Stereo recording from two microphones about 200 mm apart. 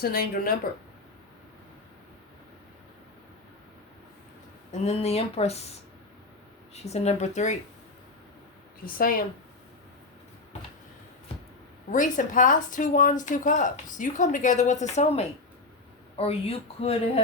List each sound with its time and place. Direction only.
0.0 s speech: 50° left (ahead or behind)
4.7 s a woman's voice: 30° left (ahead or behind)
6.7 s a woman's voice: 30° left (ahead or behind)
8.8 s speech: 45° left (ahead or behind)
11.9 s a woman's voice: 40° left (ahead or behind)